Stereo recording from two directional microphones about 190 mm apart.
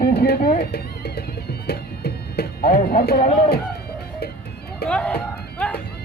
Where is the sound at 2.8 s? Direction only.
50° left (ahead or behind).